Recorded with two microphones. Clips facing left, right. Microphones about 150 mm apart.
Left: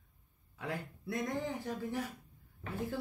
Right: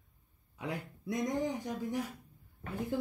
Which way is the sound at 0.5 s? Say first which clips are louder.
Right 1 dB; 15° right (ahead or behind).